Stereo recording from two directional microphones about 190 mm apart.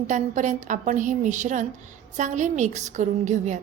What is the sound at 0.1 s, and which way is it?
A woman's voice, 40° right (ahead or behind).